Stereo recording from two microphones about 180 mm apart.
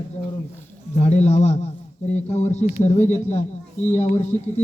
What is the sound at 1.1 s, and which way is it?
Speech, 40° left (ahead or behind).